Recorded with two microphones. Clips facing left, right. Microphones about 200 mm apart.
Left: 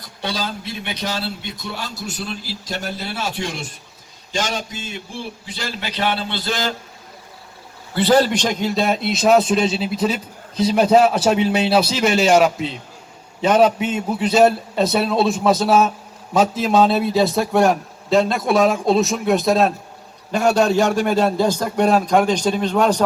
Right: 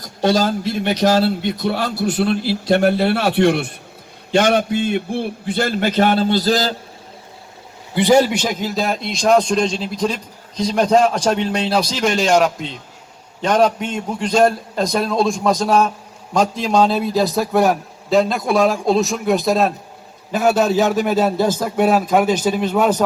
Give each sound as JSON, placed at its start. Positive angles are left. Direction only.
{"t": 0.0, "sound": "a man's voice", "side_deg": -50}
{"t": 7.9, "sound": "a man's voice", "side_deg": -10}